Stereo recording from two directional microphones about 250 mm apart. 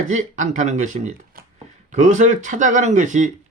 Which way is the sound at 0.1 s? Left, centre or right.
Right.